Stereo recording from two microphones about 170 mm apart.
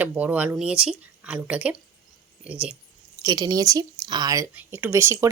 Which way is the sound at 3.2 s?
20° right (ahead or behind).